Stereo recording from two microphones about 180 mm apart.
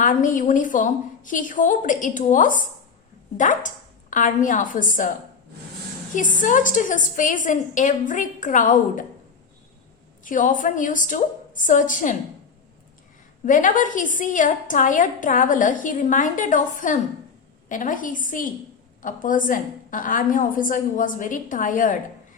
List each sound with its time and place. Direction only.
0.0 s a woman's voice: 45° left (ahead or behind)
6.4 s a woman's voice: 45° left (ahead or behind)
10.2 s a woman's voice: 45° left (ahead or behind)
13.4 s a woman's voice: 45° left (ahead or behind)